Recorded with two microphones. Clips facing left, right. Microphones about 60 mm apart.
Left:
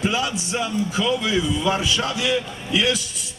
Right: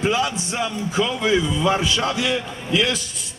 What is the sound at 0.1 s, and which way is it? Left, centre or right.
A man's voice, right.